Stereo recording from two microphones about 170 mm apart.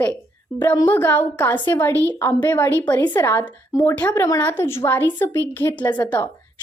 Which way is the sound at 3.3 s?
15° left (ahead or behind).